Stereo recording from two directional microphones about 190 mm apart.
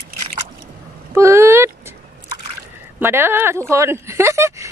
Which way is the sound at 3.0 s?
10° right (ahead or behind).